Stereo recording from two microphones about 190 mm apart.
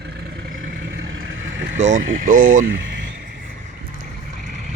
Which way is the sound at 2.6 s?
80° right.